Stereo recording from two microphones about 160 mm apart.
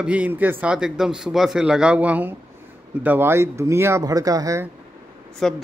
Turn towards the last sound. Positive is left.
turn(degrees=5)  # may be behind; listen again after turning